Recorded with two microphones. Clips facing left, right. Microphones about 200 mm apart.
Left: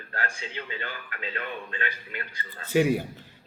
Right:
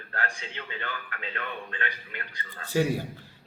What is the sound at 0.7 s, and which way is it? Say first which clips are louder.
Speech: right 3 dB; 55° right (ahead or behind).